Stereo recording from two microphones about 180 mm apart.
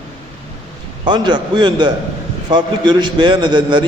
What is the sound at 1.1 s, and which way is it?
A man's voice, 25° right (ahead or behind).